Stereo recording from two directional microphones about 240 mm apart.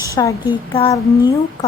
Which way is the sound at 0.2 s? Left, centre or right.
Centre.